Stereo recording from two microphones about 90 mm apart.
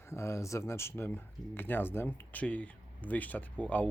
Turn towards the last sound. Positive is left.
turn(degrees=15)  # may be behind; listen again after turning